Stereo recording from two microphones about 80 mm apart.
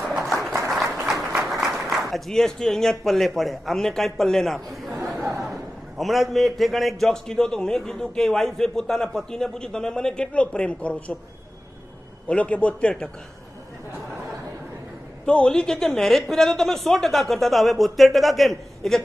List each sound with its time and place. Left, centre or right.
0.3 s applause: centre
1.8 s a woman's voice: centre
12.3 s a man's voice: centre
15.2 s a woman's voice: centre